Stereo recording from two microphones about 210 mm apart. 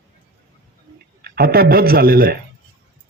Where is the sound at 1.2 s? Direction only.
45° right (ahead or behind).